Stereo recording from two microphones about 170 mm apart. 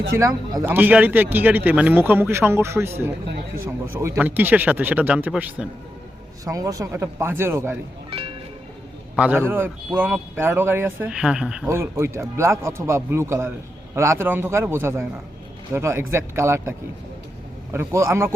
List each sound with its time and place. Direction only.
0.2 s a man's voice: 15° right (ahead or behind)
6.4 s a man's voice: 20° right (ahead or behind)
9.1 s a man's voice: 10° right (ahead or behind)